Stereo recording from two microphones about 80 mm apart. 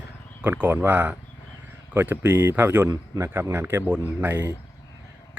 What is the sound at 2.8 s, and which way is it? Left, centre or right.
Speech, right.